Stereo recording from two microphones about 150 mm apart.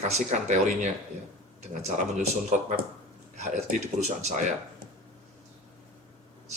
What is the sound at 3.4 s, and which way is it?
Speech, 50° right (ahead or behind).